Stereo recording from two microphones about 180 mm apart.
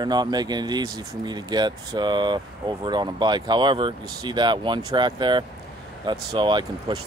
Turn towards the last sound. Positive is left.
turn(degrees=-25)  # may be behind; listen again after turning